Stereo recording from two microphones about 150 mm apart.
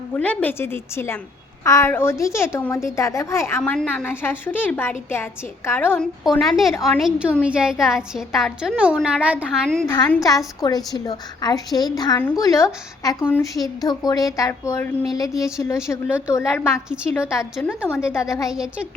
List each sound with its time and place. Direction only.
0.1 s a woman's voice: 10° left (ahead or behind)
3.6 s a woman's voice: 5° left (ahead or behind)
6.4 s a woman's voice: centre (ahead or behind)
9.8 s a woman's voice: 25° left (ahead or behind)
16.0 s a woman's voice: 10° right (ahead or behind)
16.3 s a woman's voice: 20° left (ahead or behind)
18.5 s a woman's voice: 5° right (ahead or behind)